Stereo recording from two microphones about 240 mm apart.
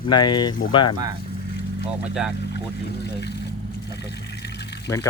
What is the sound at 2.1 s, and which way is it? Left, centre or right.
Speech, centre.